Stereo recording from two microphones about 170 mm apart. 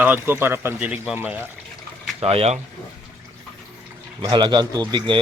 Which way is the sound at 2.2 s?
35° right (ahead or behind).